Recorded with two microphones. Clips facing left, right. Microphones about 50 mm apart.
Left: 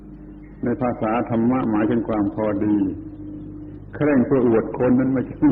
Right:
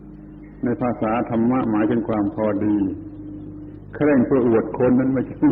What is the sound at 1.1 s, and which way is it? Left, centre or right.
Speech, left.